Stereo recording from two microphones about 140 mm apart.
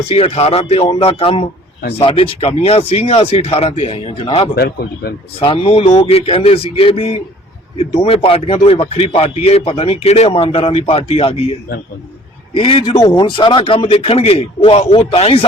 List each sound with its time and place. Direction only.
0.1 s speech: 45° left (ahead or behind)
12.5 s a man's voice: 40° left (ahead or behind)
13.0 s speech: 30° left (ahead or behind)